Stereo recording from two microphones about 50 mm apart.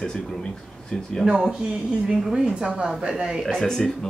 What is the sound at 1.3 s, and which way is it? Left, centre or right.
A woman's voice, centre.